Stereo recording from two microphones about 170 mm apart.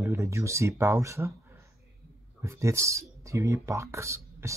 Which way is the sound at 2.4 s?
15° right (ahead or behind).